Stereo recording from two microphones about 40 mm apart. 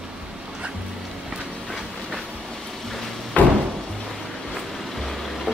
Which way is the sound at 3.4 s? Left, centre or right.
Left.